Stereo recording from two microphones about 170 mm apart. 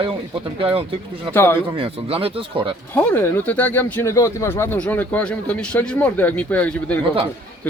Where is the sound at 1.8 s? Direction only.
35° right (ahead or behind).